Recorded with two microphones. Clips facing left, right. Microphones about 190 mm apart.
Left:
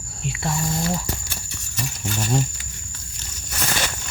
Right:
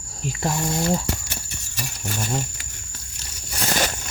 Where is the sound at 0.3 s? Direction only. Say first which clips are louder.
Right 1 dB; 40° right (ahead or behind).